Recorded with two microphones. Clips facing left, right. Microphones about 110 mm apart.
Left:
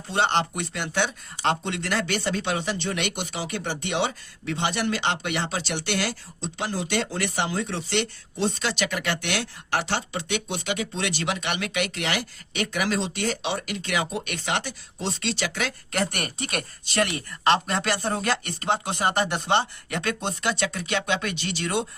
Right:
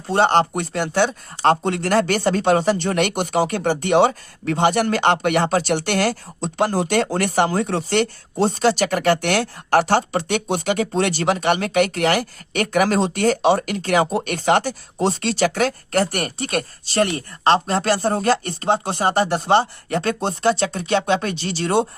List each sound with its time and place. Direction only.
0.1 s speech: 45° right (ahead or behind)